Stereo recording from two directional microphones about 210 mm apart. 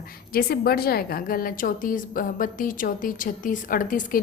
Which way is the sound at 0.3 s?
45° left (ahead or behind).